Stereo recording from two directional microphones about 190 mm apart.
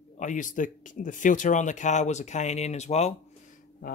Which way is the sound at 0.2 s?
40° left (ahead or behind).